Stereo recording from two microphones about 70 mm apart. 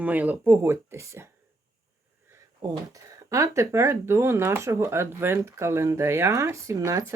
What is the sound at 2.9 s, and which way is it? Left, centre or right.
Speech, right.